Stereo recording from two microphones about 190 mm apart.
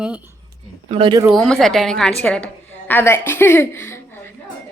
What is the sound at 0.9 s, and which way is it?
Speech, 30° right (ahead or behind).